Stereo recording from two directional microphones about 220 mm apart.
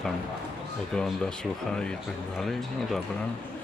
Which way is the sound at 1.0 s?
5° left (ahead or behind).